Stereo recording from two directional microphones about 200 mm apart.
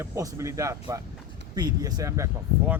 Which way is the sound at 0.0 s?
15° right (ahead or behind).